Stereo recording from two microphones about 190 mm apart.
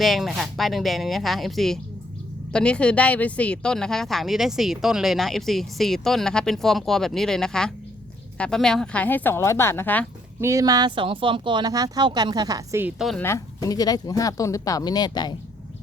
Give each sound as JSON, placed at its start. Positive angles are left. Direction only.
{"t": 0.0, "sound": "speech", "side_deg": 0}
{"t": 10.4, "sound": "speech", "side_deg": -15}
{"t": 13.0, "sound": "speech", "side_deg": 0}
{"t": 13.2, "sound": "speech", "side_deg": 15}